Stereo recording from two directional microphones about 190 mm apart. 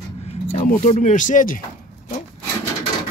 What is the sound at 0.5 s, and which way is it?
Speech, 40° left (ahead or behind).